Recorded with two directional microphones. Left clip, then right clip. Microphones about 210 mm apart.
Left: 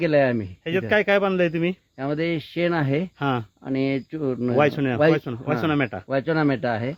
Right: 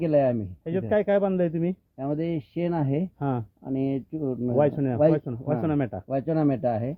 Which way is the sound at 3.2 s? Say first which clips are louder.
Left 5 dB; 5° left (ahead or behind).